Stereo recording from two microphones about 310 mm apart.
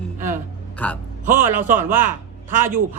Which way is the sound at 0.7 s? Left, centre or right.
Centre.